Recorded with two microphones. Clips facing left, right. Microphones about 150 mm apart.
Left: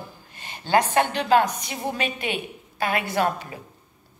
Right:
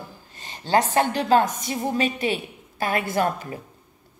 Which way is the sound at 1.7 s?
40° right (ahead or behind).